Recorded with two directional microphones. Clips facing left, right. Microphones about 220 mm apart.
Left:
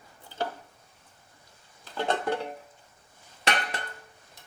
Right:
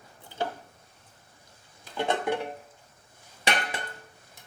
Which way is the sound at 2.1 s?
20° right (ahead or behind).